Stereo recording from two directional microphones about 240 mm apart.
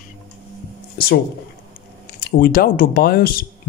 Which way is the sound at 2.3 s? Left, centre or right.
Left.